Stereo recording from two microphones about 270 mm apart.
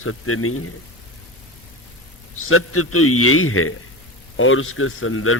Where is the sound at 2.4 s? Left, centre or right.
Left.